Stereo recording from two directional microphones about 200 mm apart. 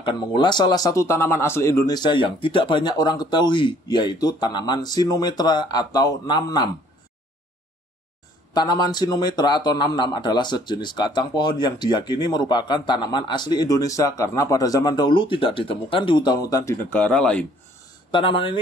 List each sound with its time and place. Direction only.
0.0 s speech: 25° left (ahead or behind)
8.5 s speech: 20° left (ahead or behind); by 17.5 s 5° left (ahead or behind)
18.1 s speech: 25° left (ahead or behind)